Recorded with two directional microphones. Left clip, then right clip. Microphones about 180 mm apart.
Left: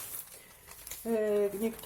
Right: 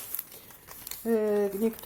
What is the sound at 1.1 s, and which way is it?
Speech, 45° right (ahead or behind).